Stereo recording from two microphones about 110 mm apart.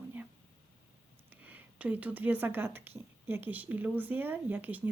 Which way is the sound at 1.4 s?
15° right (ahead or behind).